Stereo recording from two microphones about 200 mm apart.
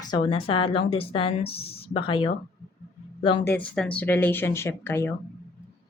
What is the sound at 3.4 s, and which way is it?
Speech, 10° left (ahead or behind).